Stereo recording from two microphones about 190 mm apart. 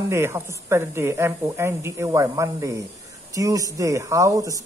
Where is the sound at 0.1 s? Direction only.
15° right (ahead or behind).